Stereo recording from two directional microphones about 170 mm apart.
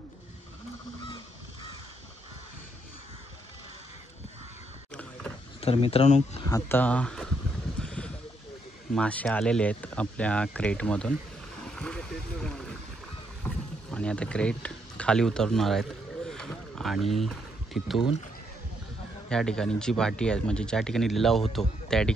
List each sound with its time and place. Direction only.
1.0 s crow: 30° left (ahead or behind)
5.6 s speech: 35° left (ahead or behind)
6.5 s speech: 10° left (ahead or behind)
7.8 s a sound: 5° left (ahead or behind)
8.9 s speech: 5° left (ahead or behind)
11.6 s boat: 5° left (ahead or behind)
13.4 s a sound: 5° left (ahead or behind)
19.2 s speech: 5° left (ahead or behind)